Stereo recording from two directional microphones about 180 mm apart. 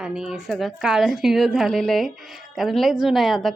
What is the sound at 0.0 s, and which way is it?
A woman's voice, 5° right (ahead or behind).